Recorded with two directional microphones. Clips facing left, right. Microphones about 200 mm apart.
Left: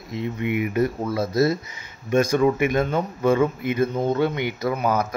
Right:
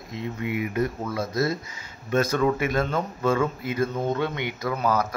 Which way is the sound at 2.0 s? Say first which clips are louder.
Left 4 dB; 15° left (ahead or behind).